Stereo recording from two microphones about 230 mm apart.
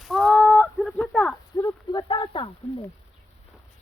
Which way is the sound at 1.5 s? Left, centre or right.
Centre.